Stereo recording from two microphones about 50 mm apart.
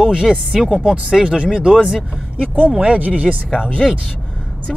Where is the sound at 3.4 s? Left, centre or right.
Centre.